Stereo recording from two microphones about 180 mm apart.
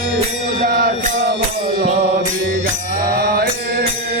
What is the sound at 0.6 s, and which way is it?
Music, 55° right (ahead or behind).